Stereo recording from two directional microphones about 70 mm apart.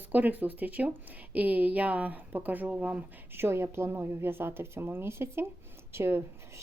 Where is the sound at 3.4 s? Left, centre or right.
Right.